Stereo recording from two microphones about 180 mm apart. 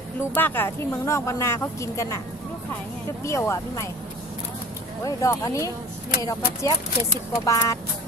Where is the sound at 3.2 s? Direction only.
15° left (ahead or behind).